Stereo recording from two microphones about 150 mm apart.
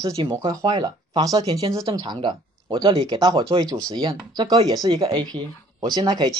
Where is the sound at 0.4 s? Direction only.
25° right (ahead or behind).